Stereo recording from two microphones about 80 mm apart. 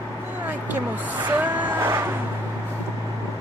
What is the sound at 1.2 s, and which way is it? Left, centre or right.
Music, right.